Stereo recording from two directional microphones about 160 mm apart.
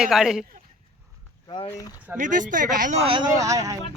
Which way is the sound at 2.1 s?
55° right (ahead or behind).